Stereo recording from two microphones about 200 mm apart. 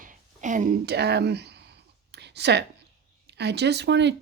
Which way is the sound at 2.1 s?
55° right (ahead or behind).